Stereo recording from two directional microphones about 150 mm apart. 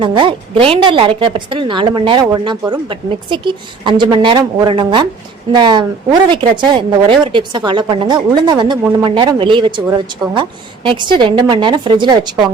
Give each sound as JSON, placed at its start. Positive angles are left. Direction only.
{"t": 0.0, "sound": "a woman's voice", "side_deg": -35}